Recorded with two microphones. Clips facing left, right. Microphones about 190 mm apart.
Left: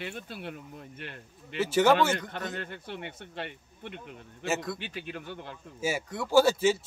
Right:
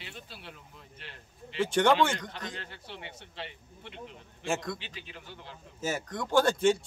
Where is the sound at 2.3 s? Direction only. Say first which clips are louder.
Left 5 dB; 55° left (ahead or behind).